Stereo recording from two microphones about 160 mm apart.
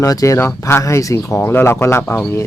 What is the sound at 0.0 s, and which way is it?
Speech, 20° left (ahead or behind).